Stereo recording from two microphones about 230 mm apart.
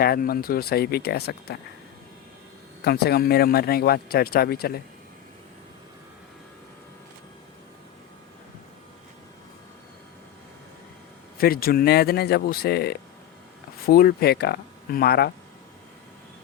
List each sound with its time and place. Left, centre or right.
0.0 s speech: left
2.8 s a man's voice: left
11.3 s speech: left